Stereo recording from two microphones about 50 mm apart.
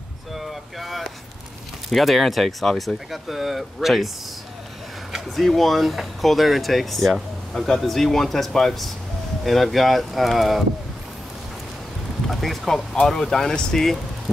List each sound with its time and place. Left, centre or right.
0.3 s boat: centre
1.9 s speech: centre
5.1 s speech: centre
12.3 s speech: centre